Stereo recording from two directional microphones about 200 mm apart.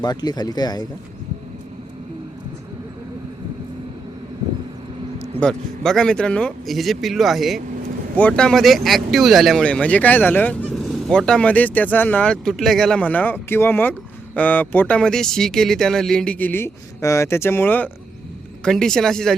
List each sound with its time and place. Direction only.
0.0 s speech: 20° left (ahead or behind)
5.4 s speech: 5° left (ahead or behind)